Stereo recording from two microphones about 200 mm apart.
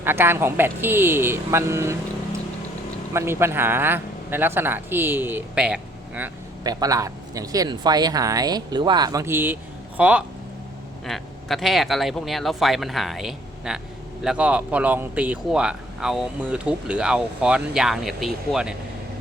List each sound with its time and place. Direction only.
0.0 s a man's voice: 10° right (ahead or behind)
3.1 s a man's voice: 15° right (ahead or behind)
6.7 s a man's voice: 20° right (ahead or behind)